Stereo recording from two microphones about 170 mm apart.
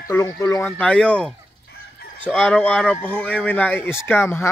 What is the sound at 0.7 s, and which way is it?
Speech, 5° left (ahead or behind).